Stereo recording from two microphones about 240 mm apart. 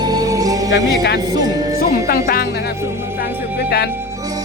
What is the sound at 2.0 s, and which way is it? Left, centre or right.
Music, left.